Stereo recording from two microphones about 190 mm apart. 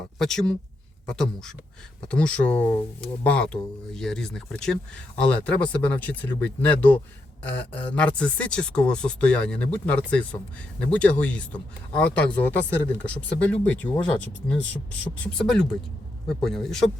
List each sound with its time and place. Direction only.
0.2 s speech: 5° left (ahead or behind)